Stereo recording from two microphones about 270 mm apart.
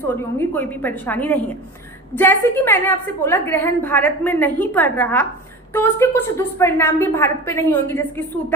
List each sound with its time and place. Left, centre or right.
0.2 s a woman's voice: centre